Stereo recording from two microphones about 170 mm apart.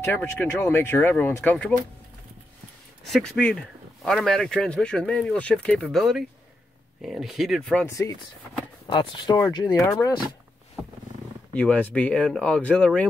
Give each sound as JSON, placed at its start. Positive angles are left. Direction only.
{"t": 0.0, "sound": "speech", "side_deg": 15}
{"t": 3.1, "sound": "speech", "side_deg": 5}
{"t": 8.8, "sound": "speech", "side_deg": 25}
{"t": 11.5, "sound": "speech", "side_deg": 5}